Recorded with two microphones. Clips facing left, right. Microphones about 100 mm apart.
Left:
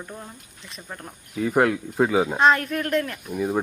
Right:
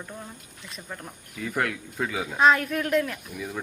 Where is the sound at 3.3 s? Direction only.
50° left (ahead or behind).